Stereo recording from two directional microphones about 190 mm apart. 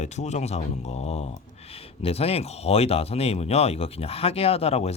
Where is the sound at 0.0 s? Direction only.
35° left (ahead or behind).